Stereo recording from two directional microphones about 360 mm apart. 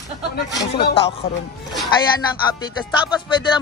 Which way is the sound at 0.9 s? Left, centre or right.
Centre.